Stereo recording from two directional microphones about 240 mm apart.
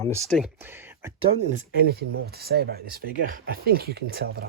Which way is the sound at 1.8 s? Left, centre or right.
Right.